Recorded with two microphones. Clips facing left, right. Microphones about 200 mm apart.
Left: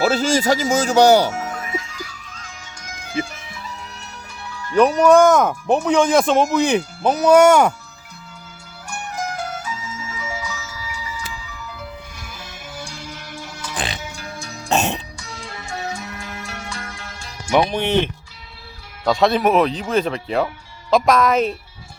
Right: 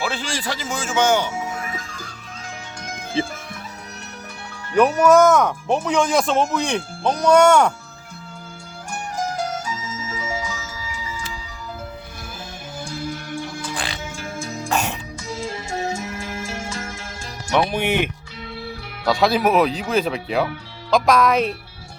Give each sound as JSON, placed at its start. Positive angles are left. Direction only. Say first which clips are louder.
{"t": 0.0, "sound": "speech", "louder": "left 9 dB", "side_deg": 40}
{"t": 3.2, "sound": "speech", "louder": "right 1 dB", "side_deg": -30}
{"t": 4.8, "sound": "speech", "louder": "left 2 dB", "side_deg": -5}
{"t": 9.4, "sound": "music", "louder": "right 2 dB", "side_deg": -40}
{"t": 13.7, "sound": "music", "louder": "left 1 dB", "side_deg": 20}
{"t": 17.7, "sound": "speech", "louder": "left 2 dB", "side_deg": -10}